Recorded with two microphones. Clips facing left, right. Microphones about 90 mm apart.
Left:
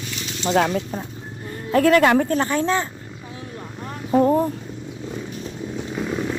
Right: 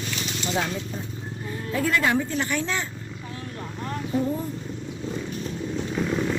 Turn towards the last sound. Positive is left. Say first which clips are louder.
# even
turn(degrees=5)  # may be behind; listen again after turning